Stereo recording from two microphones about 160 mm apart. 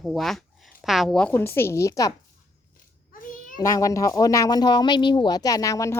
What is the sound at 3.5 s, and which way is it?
Speech, 20° left (ahead or behind).